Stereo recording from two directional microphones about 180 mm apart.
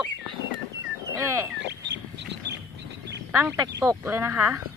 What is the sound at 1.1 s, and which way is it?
Bird, 15° right (ahead or behind).